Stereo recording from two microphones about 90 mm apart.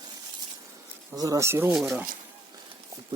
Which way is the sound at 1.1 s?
40° right (ahead or behind).